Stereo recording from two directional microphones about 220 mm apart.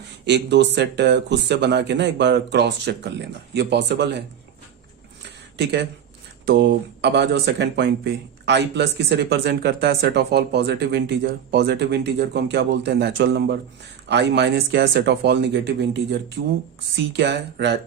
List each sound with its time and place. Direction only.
0.3 s speech: 50° right (ahead or behind)
6.5 s speech: 55° right (ahead or behind)